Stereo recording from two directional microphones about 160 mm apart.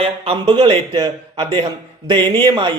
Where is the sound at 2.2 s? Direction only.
15° left (ahead or behind).